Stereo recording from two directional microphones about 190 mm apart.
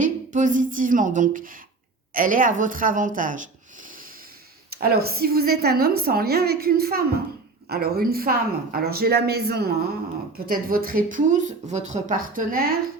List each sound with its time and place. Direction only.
0.0 s speech: 40° right (ahead or behind)
4.7 s a woman's voice: 55° right (ahead or behind)